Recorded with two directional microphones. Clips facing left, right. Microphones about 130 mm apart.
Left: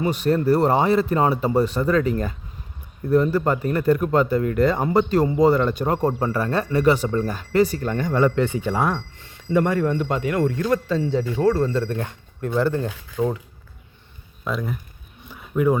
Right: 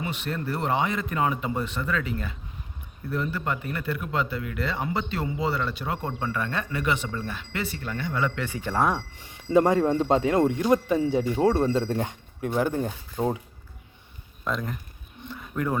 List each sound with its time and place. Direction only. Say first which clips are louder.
0.0 s speech: left 11 dB; 40° left (ahead or behind)
8.4 s speech: left 7 dB; 20° left (ahead or behind)
8.7 s speech: right 3 dB; centre (ahead or behind)
9.0 s speech: left 1 dB; 15° right (ahead or behind)
14.4 s speech: left 3 dB; 5° left (ahead or behind)
15.2 s a sound: left 8 dB; 10° left (ahead or behind)